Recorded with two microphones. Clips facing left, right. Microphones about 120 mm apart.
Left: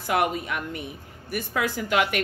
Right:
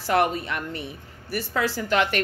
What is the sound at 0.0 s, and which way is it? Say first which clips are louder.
Speech: right 2 dB; 15° left (ahead or behind).